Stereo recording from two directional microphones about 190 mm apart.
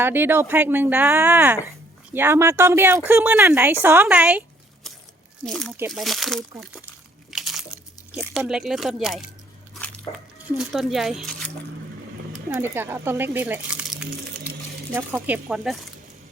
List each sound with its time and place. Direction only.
0.0 s speech: 10° right (ahead or behind)
7.3 s crunch: centre (ahead or behind)
8.3 s speech: 5° right (ahead or behind)
10.1 s speech: 30° left (ahead or behind)
10.6 s speech: centre (ahead or behind)
12.5 s speech: 10° right (ahead or behind)